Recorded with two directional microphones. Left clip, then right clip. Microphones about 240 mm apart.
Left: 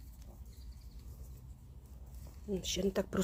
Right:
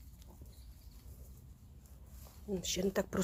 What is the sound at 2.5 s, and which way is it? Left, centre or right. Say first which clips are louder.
Speech: even; centre.